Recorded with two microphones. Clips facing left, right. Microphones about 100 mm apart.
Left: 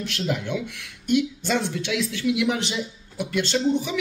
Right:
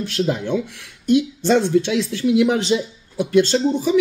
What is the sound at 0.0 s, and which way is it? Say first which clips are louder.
Speech: right 6 dB; 30° right (ahead or behind).